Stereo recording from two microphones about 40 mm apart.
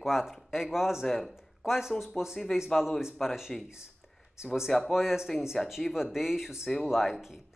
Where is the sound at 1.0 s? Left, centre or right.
Centre.